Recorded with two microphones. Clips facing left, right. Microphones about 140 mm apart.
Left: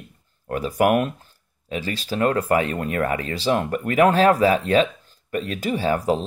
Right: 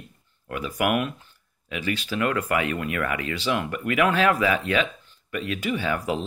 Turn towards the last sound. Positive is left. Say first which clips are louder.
# left 5 dB
turn(degrees=35)  # may be behind; listen again after turning